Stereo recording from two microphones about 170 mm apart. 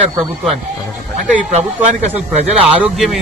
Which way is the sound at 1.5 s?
40° right (ahead or behind).